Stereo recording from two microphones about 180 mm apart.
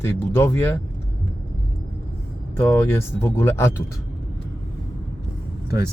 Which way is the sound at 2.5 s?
15° left (ahead or behind).